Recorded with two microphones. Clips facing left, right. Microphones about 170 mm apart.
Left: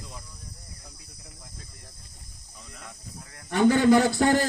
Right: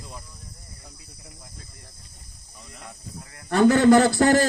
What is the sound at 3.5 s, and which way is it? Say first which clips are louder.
Speech: right 3 dB; 80° right.